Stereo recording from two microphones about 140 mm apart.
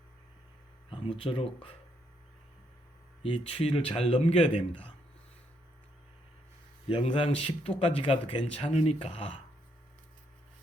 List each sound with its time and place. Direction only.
0.9 s speech: 40° left (ahead or behind)
3.2 s a man's voice: 40° left (ahead or behind)
6.8 s a man's voice: 40° left (ahead or behind)